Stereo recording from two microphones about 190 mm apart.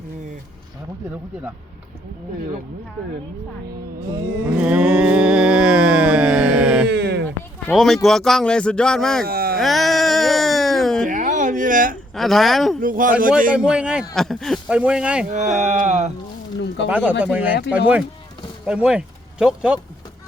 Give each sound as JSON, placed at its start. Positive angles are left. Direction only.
{"t": 4.1, "sound": "mantra", "side_deg": -10}
{"t": 6.8, "sound": "a sound", "side_deg": -60}
{"t": 7.7, "sound": "speech", "side_deg": 0}
{"t": 9.2, "sound": "a sound", "side_deg": -50}
{"t": 9.6, "sound": "music", "side_deg": 0}
{"t": 11.1, "sound": "a sound", "side_deg": -40}
{"t": 12.1, "sound": "speech", "side_deg": 0}
{"t": 12.8, "sound": "speech", "side_deg": -45}
{"t": 13.5, "sound": "speech", "side_deg": -5}
{"t": 15.3, "sound": "speech", "side_deg": -40}
{"t": 16.9, "sound": "speech", "side_deg": -10}